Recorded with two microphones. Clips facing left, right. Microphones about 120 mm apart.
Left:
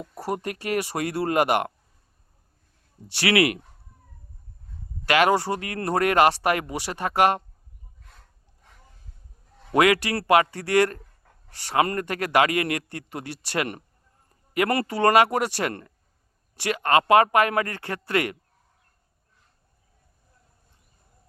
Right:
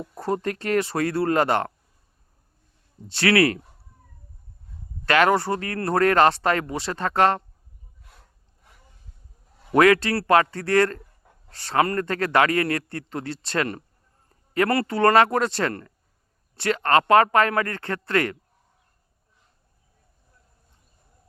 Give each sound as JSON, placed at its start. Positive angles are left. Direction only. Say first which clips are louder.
{"t": 0.2, "sound": "a man's voice", "louder": "right 3 dB", "side_deg": 15}
{"t": 3.1, "sound": "a man's voice", "louder": "right 2 dB", "side_deg": 15}
{"t": 5.0, "sound": "a man's voice", "louder": "right 1 dB", "side_deg": 15}
{"t": 8.1, "sound": "rub", "louder": "even", "side_deg": -5}
{"t": 9.7, "sound": "a man's voice", "louder": "right 3 dB", "side_deg": 15}